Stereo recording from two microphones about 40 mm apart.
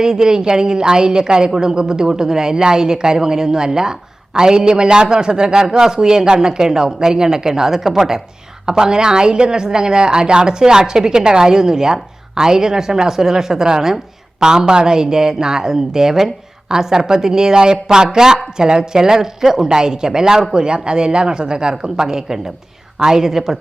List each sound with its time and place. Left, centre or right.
0.0 s a woman's voice: centre